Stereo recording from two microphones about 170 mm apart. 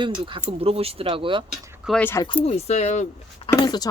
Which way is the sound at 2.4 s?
40° left (ahead or behind).